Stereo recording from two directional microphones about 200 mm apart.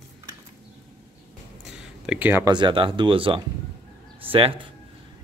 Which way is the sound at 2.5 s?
25° right (ahead or behind).